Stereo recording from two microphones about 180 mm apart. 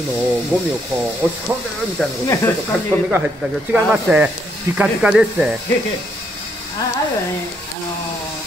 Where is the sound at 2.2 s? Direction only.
15° left (ahead or behind).